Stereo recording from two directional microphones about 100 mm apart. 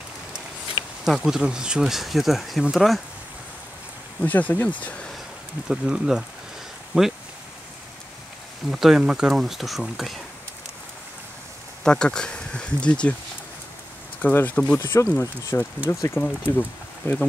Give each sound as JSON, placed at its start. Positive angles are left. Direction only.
{"t": 1.0, "sound": "speech", "side_deg": -5}
{"t": 4.2, "sound": "speech", "side_deg": 15}
{"t": 5.7, "sound": "speech", "side_deg": -5}
{"t": 6.9, "sound": "a sound", "side_deg": -5}
{"t": 8.6, "sound": "speech", "side_deg": 0}
{"t": 11.8, "sound": "speech", "side_deg": 10}
{"t": 14.2, "sound": "speech", "side_deg": 15}
{"t": 16.2, "sound": "speech", "side_deg": 15}